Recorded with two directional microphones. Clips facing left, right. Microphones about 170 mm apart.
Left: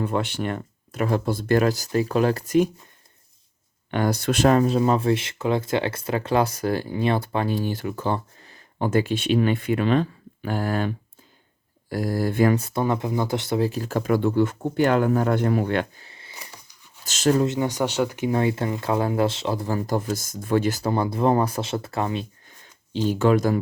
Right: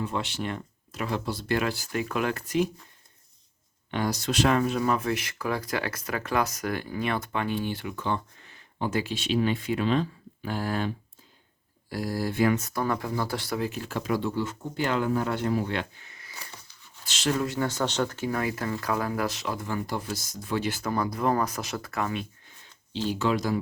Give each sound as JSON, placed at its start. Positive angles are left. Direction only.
{"t": 0.0, "sound": "speech", "side_deg": 55}
{"t": 3.9, "sound": "speech", "side_deg": 55}
{"t": 12.5, "sound": "speech", "side_deg": 25}
{"t": 13.7, "sound": "speech", "side_deg": 40}
{"t": 16.0, "sound": "a sound", "side_deg": 30}
{"t": 17.0, "sound": "speech", "side_deg": 45}
{"t": 17.4, "sound": "speech", "side_deg": 20}
{"t": 18.3, "sound": "speech", "side_deg": 25}
{"t": 20.9, "sound": "speech", "side_deg": 30}
{"t": 23.0, "sound": "speech", "side_deg": 50}